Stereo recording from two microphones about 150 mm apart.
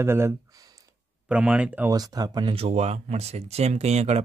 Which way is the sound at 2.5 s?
45° right (ahead or behind).